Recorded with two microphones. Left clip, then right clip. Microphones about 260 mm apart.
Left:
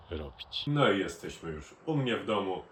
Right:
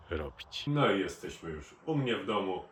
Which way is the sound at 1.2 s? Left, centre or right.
Centre.